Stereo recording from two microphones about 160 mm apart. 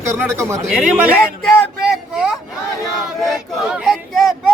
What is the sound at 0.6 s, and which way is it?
Speech, 5° right (ahead or behind).